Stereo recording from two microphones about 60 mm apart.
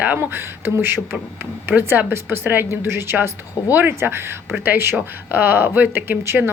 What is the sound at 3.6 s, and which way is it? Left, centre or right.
Speech, left.